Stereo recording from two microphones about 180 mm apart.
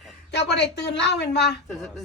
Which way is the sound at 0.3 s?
70° left (ahead or behind).